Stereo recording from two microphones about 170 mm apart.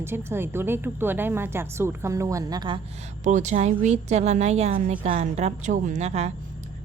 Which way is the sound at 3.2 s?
45° right (ahead or behind).